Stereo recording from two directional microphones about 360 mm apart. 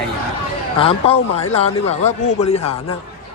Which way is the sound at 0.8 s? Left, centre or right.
Centre.